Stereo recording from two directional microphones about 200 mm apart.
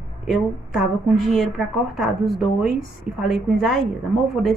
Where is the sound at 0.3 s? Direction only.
Centre (ahead or behind).